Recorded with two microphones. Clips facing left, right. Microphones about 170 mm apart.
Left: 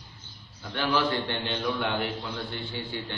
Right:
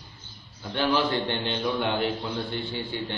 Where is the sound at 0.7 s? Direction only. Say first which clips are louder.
Right 2 dB; 20° right (ahead or behind).